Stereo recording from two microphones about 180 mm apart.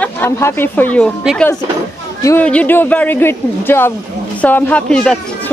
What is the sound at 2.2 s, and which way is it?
Speech, 10° left (ahead or behind).